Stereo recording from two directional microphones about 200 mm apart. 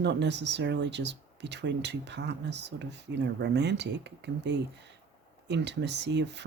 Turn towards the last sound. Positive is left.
turn(degrees=-60)  # may be behind; listen again after turning